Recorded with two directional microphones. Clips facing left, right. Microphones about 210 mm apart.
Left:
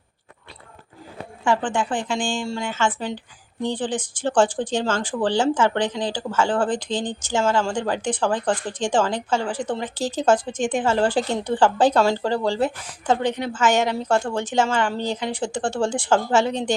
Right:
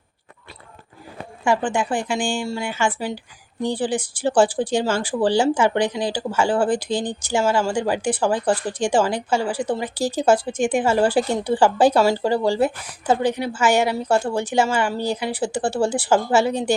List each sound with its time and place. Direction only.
1.5 s speech: 10° right (ahead or behind)